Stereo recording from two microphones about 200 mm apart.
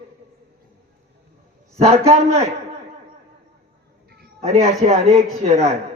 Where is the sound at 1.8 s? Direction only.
30° right (ahead or behind).